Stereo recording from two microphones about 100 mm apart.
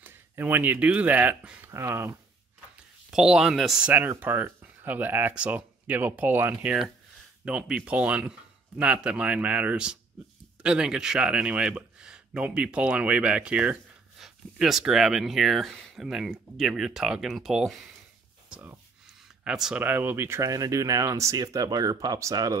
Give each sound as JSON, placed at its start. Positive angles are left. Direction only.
{"t": 0.0, "sound": "speech", "side_deg": -20}
{"t": 1.7, "sound": "speech", "side_deg": -25}
{"t": 3.1, "sound": "speech", "side_deg": -5}
{"t": 3.9, "sound": "speech", "side_deg": -20}
{"t": 18.5, "sound": "a sound", "side_deg": -20}
{"t": 19.4, "sound": "speech", "side_deg": -5}
{"t": 19.8, "sound": "speech", "side_deg": -20}